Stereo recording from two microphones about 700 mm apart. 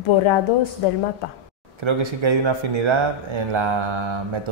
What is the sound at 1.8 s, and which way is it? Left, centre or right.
Speech, right.